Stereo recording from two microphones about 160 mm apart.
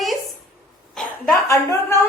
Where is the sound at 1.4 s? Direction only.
20° left (ahead or behind).